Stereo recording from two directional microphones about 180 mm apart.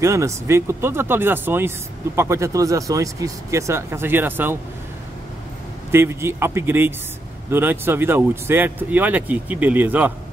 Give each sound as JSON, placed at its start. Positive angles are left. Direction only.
{"t": 0.0, "sound": "speech", "side_deg": -15}
{"t": 5.9, "sound": "speech", "side_deg": -15}